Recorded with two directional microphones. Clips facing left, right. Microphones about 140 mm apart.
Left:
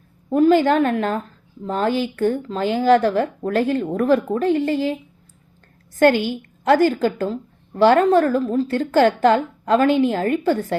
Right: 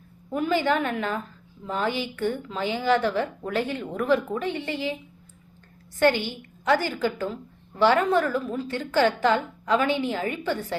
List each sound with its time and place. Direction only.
0.3 s a woman's voice: 40° left (ahead or behind)
6.7 s a woman's voice: 40° left (ahead or behind)